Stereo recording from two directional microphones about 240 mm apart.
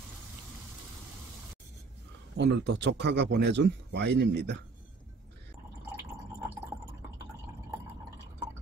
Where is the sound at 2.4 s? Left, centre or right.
Right.